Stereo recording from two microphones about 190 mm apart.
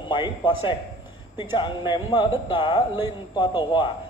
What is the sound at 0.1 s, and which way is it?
A man's voice, 25° left (ahead or behind).